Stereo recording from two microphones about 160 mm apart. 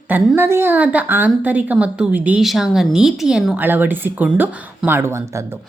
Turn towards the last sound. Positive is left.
turn(degrees=-15)  # may be behind; listen again after turning